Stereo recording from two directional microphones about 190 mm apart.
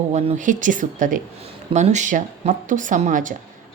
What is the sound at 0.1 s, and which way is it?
A woman's voice, 35° right (ahead or behind).